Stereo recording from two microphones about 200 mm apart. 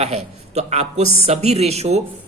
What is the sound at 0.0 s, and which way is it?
Speech, 35° right (ahead or behind).